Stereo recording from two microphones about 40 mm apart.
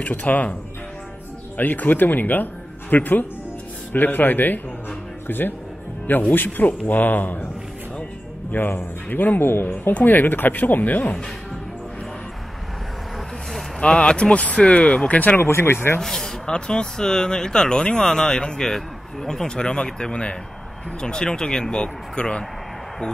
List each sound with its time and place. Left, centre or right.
0.0 s speech: left
1.6 s speech: left
6.0 s speech: left
8.5 s speech: left
13.7 s speech: left
15.3 s speech: left
16.0 s speech: centre